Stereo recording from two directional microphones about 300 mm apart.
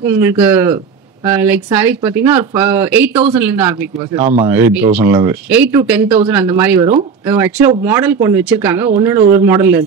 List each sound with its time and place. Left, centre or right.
0.0 s speech: centre
4.2 s speech: right
4.5 s speech: centre